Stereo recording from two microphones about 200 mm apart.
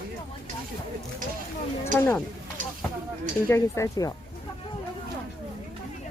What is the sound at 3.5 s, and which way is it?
Speech, 15° left (ahead or behind).